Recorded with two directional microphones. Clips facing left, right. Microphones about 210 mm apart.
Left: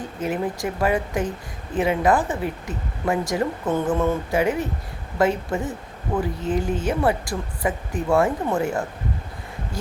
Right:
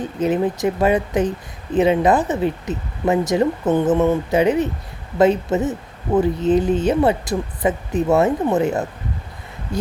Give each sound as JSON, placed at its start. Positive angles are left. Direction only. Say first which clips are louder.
{"t": 0.2, "sound": "speech", "louder": "right 6 dB", "side_deg": -20}